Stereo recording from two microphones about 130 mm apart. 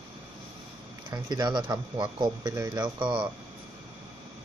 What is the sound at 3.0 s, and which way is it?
Speech, 35° right (ahead or behind).